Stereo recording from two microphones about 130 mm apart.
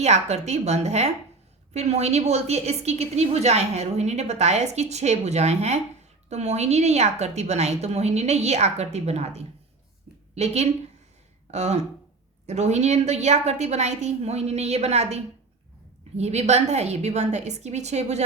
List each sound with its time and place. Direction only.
0.0 s a woman's voice: 60° right (ahead or behind)